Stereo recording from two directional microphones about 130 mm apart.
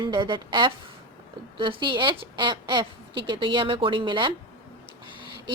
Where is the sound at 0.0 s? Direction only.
35° right (ahead or behind).